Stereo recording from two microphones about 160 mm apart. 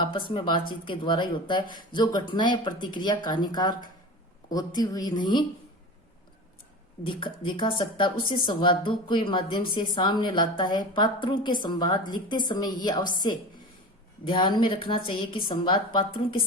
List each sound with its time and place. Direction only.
0.0 s a woman's voice: 30° left (ahead or behind)
7.0 s speech: 30° left (ahead or behind)
14.3 s a woman's voice: 30° left (ahead or behind)